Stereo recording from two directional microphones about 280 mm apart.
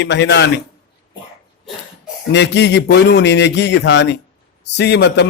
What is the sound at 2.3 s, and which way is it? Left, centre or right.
A man's voice, left.